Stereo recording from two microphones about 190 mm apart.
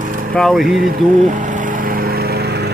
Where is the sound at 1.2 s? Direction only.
40° right (ahead or behind).